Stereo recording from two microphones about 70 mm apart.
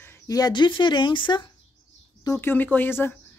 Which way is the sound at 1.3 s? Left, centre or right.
Left.